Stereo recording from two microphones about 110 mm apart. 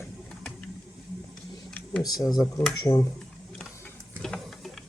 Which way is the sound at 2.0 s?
35° left (ahead or behind).